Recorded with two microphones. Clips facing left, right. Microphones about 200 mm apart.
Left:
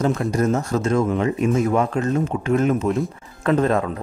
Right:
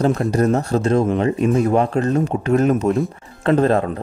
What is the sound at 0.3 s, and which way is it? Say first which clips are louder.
Speech: right 3 dB; 35° right (ahead or behind).